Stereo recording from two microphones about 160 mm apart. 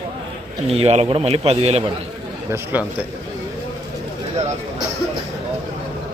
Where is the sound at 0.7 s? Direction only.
40° right (ahead or behind).